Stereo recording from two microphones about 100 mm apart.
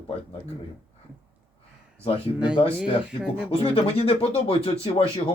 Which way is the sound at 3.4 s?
70° left (ahead or behind).